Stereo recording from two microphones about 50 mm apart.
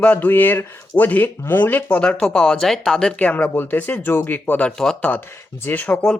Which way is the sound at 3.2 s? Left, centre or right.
Left.